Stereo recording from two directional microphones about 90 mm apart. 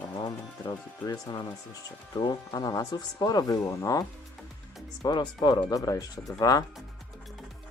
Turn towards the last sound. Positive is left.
turn(degrees=40)  # may be behind; listen again after turning